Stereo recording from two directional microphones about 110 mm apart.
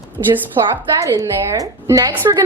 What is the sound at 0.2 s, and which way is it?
Speech, 40° right (ahead or behind).